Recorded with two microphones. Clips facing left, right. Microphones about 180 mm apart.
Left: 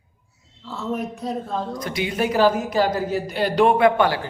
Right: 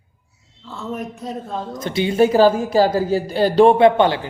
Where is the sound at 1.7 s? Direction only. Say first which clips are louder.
Right 5 dB; 25° right (ahead or behind).